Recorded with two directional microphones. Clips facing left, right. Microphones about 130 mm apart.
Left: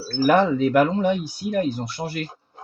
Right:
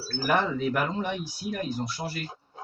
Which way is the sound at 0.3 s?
80° left.